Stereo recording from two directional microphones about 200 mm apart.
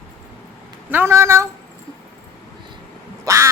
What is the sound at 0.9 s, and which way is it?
Speech, 10° right (ahead or behind).